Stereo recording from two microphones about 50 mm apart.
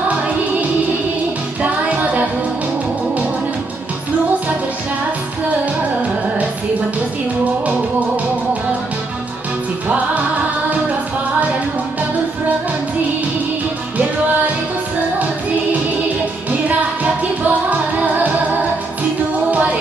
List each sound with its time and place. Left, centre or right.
1.6 s music: right
16.6 s music: right
19.5 s music: right